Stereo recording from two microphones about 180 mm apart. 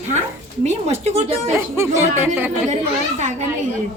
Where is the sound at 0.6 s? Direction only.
40° right (ahead or behind).